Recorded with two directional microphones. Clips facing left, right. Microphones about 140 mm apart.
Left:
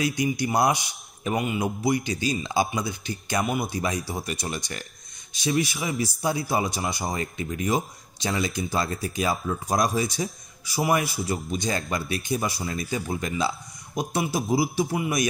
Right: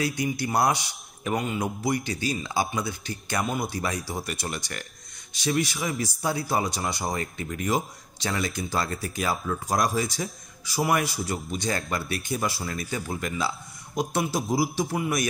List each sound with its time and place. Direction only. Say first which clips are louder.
0.0 s a man's voice: left 2 dB; 15° left (ahead or behind)
5.8 s a man's voice: left 1 dB; 5° left (ahead or behind)
7.2 s a man's voice: left 2 dB; 20° left (ahead or behind)
13.9 s a man's voice: even; 10° left (ahead or behind)